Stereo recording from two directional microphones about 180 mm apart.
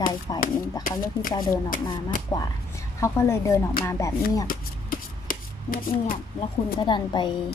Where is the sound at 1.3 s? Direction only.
25° left (ahead or behind).